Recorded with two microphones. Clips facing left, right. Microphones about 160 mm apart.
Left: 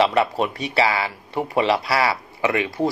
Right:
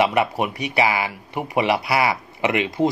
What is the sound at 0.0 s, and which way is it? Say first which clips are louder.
Speech: left 1 dB; 15° right (ahead or behind).